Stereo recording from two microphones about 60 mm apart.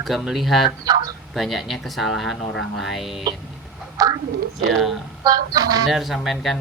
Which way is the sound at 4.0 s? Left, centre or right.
Right.